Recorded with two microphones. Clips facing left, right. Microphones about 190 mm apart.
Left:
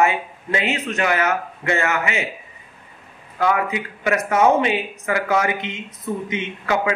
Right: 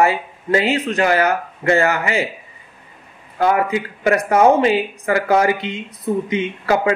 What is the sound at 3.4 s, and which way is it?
Speech, 35° right (ahead or behind).